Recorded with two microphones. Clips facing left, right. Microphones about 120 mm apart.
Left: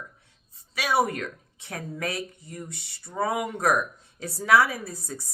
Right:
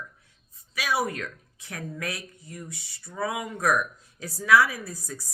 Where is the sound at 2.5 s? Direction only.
25° left (ahead or behind).